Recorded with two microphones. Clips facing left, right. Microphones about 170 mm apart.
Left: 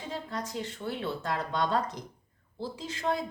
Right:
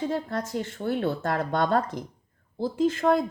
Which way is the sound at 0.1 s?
55° right (ahead or behind).